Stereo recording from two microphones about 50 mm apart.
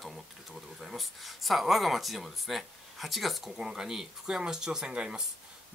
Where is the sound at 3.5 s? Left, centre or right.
Centre.